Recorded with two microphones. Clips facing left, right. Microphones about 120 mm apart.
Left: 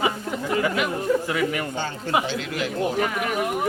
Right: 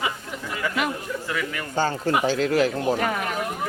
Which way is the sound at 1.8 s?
40° right (ahead or behind).